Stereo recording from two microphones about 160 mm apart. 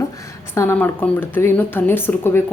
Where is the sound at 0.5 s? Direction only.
15° left (ahead or behind).